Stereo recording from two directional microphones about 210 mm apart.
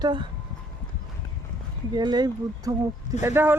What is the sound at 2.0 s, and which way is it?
Speech, 20° right (ahead or behind).